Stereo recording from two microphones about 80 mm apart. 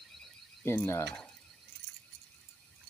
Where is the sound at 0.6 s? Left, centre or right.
Left.